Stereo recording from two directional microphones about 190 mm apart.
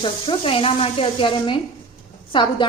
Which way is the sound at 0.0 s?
25° left (ahead or behind).